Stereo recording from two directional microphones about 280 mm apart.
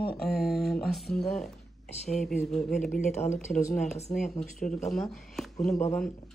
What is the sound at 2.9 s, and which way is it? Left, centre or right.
Speech, left.